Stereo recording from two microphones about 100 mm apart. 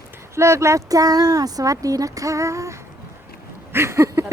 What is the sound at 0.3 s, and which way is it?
Speech, 30° right (ahead or behind).